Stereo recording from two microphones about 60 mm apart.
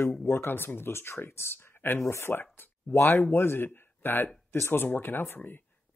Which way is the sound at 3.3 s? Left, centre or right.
Left.